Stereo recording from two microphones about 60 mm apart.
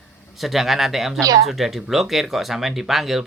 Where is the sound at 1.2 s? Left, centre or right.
Right.